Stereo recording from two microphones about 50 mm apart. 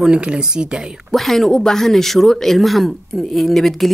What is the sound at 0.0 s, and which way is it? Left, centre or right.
Speech, centre.